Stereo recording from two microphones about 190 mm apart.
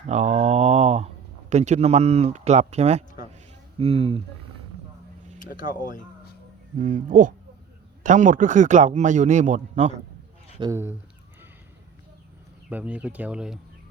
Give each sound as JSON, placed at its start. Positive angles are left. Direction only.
{"t": 0.1, "sound": "a sound", "side_deg": -35}
{"t": 3.8, "sound": "speech", "side_deg": -30}
{"t": 5.5, "sound": "speech", "side_deg": 45}
{"t": 6.7, "sound": "speech", "side_deg": -40}
{"t": 10.6, "sound": "speech", "side_deg": -15}
{"t": 12.7, "sound": "speech", "side_deg": -5}